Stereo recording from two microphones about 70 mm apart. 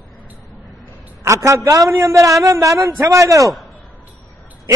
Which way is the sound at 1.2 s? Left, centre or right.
Right.